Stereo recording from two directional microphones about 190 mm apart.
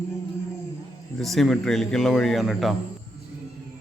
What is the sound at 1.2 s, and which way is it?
Speech, centre (ahead or behind).